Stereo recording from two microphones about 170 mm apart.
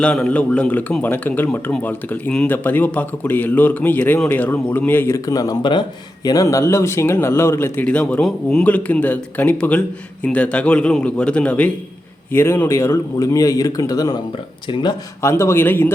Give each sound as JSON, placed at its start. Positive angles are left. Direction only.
{"t": 0.0, "sound": "speech", "side_deg": 5}
{"t": 15.2, "sound": "speech", "side_deg": 15}